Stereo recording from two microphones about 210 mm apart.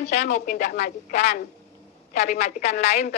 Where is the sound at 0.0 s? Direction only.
35° left (ahead or behind).